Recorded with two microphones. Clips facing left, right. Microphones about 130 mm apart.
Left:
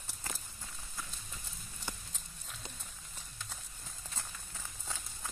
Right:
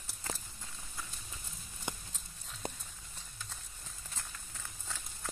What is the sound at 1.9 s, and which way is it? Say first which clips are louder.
Horse: right 3 dB; 20° right (ahead or behind).